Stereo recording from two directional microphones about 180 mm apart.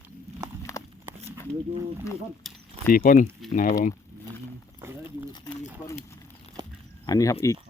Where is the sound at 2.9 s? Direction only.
50° left (ahead or behind).